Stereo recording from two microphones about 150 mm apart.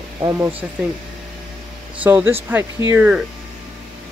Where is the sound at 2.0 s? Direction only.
15° right (ahead or behind).